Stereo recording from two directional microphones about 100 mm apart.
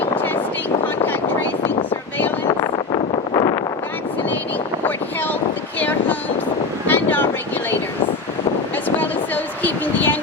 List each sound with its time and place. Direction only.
2.7 s vehicle: 50° left (ahead or behind)
6.8 s vehicle: 20° left (ahead or behind)
9.0 s a sound: 20° left (ahead or behind)